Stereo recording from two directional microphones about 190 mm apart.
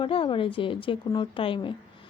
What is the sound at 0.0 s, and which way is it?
A woman's voice, 25° left (ahead or behind).